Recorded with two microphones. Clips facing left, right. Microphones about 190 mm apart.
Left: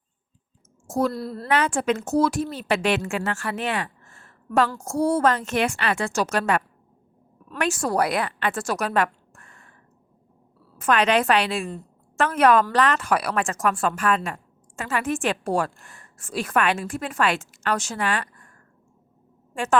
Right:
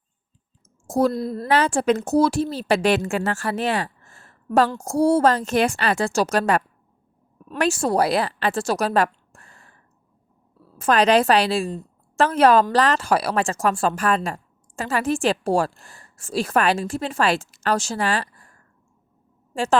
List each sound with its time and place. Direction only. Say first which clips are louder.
0.9 s a woman's voice: right 4 dB; 35° right (ahead or behind)
1.1 s a woman's voice: right 5 dB; 20° right (ahead or behind)
1.5 s speech: right 3 dB; 30° right (ahead or behind)
7.6 s a woman's voice: right 3 dB; 30° right (ahead or behind)
10.8 s speech: right 3 dB; 35° right (ahead or behind)